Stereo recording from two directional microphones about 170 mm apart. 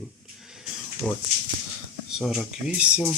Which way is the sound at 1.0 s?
Centre (ahead or behind).